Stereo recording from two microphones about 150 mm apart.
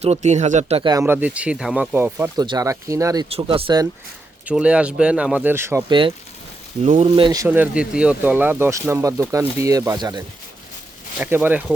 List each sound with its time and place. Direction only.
0.0 s speech: 50° right (ahead or behind)
0.8 s speech: 30° right (ahead or behind)
1.0 s speech: 10° right (ahead or behind)
2.3 s speech: 25° right (ahead or behind)
3.2 s speech: 40° right (ahead or behind)
4.4 s speech: 5° right (ahead or behind)
5.9 s speech: 35° right (ahead or behind)
6.8 s speech: 50° right (ahead or behind)
7.2 s speech: 30° right (ahead or behind)
7.4 s speech: 10° right (ahead or behind)
11.2 s speech: 10° right (ahead or behind)